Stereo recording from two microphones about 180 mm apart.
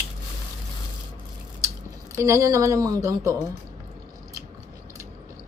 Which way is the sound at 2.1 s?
15° right (ahead or behind).